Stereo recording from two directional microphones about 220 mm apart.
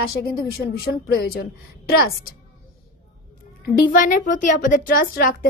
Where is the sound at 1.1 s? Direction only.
45° left (ahead or behind).